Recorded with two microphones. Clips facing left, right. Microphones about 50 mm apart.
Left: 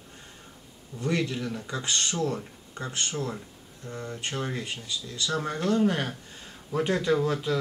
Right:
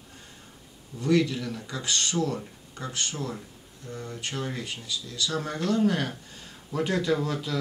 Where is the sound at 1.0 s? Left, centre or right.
Left.